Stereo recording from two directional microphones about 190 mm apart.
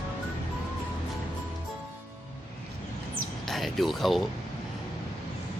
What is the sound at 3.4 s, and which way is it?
Speech, centre (ahead or behind).